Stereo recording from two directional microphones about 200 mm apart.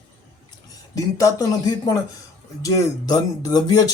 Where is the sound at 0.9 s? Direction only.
15° left (ahead or behind).